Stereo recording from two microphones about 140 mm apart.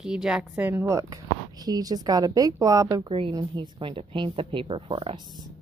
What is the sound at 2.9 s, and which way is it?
A woman's voice, 40° right (ahead or behind).